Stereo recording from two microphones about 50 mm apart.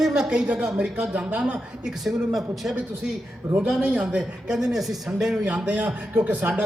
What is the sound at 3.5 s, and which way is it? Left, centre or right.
A man's voice, centre.